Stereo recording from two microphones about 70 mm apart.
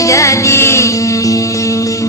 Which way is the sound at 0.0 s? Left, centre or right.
Left.